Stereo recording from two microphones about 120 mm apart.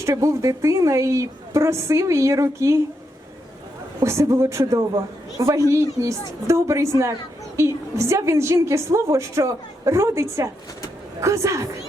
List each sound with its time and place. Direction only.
0.0 s a woman's voice: 25° right (ahead or behind)
4.0 s a woman's voice: 25° right (ahead or behind)